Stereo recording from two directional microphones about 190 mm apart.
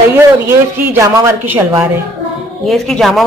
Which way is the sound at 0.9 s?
15° right (ahead or behind).